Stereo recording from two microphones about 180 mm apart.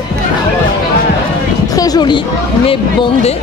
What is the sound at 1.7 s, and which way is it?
Speech, 20° left (ahead or behind).